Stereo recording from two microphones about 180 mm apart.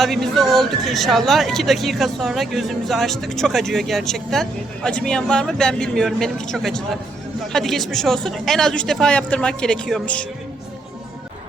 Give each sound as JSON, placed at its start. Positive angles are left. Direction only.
{"t": 0.0, "sound": "speech", "side_deg": 0}